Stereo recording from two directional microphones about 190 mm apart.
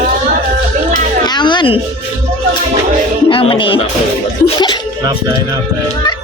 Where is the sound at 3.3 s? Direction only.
30° left (ahead or behind).